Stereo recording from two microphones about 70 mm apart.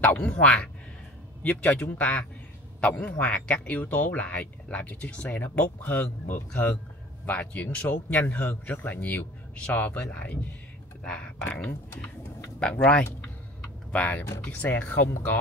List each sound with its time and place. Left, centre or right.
0.0 s speech: centre
12.5 s speech: centre